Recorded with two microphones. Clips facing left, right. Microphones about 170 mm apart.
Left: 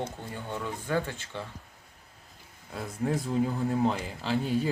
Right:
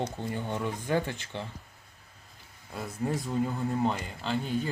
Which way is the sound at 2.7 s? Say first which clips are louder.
Left 2 dB; centre (ahead or behind).